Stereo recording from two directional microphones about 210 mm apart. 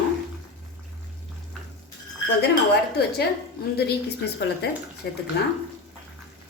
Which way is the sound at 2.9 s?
50° left (ahead or behind).